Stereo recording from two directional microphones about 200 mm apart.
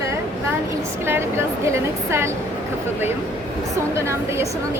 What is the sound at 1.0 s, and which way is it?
A woman's voice, 10° right (ahead or behind).